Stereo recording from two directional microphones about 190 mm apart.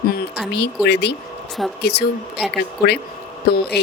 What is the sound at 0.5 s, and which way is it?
Speech, 60° left (ahead or behind).